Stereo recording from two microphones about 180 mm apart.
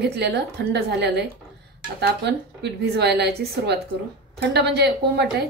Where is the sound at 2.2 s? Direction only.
70° right (ahead or behind).